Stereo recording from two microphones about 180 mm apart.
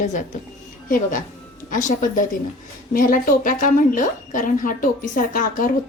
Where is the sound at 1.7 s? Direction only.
45° left (ahead or behind).